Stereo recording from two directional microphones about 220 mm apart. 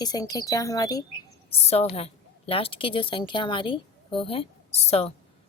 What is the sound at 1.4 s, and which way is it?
A woman's voice, 25° left (ahead or behind).